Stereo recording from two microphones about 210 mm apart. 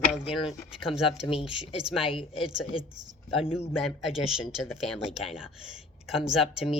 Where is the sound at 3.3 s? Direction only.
25° left (ahead or behind).